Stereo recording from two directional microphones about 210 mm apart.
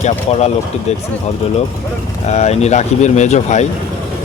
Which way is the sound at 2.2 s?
30° left (ahead or behind).